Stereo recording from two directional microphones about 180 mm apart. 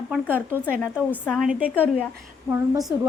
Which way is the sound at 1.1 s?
5° left (ahead or behind).